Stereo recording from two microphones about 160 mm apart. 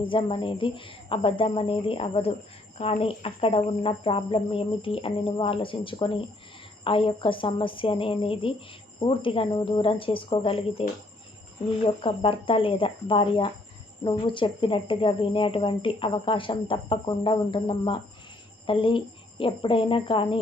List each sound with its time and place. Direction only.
0.0 s speech: 30° left (ahead or behind)